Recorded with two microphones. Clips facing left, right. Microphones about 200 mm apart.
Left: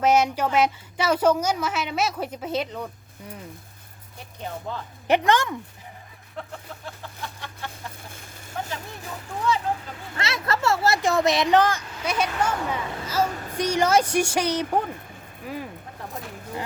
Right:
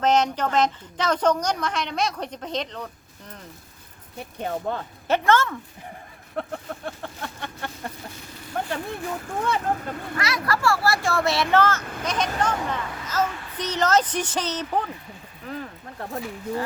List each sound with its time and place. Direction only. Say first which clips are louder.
0.0 s a woman's voice: left 1 dB; 10° left (ahead or behind)
4.2 s speech: right 6 dB; 55° right (ahead or behind)
5.0 s a woman's voice: even; 15° left (ahead or behind)
6.4 s speech: right 6 dB; 60° right (ahead or behind)
6.8 s a sound: right 4 dB; 55° right (ahead or behind)
8.7 s speech: right 6 dB; 55° right (ahead or behind)
10.2 s a woman's voice: even; 25° left (ahead or behind)
11.8 s speech: right 5 dB; 55° right (ahead or behind)
12.0 s a woman's voice: even; 10° left (ahead or behind)
13.2 s speech: left 1 dB; 40° left (ahead or behind)
13.6 s a woman's voice: left 2 dB; 10° left (ahead or behind)